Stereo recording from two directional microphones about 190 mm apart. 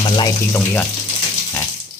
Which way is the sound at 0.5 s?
10° left (ahead or behind).